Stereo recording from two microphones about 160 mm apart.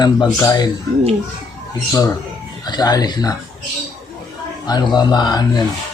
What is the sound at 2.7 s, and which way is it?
Speech, 25° left (ahead or behind).